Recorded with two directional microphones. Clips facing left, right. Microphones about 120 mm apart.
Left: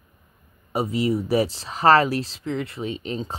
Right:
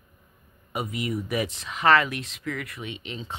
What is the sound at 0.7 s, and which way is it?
Speech, 30° left (ahead or behind).